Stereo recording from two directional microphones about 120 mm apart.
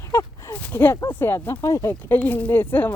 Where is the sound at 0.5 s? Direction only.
15° left (ahead or behind).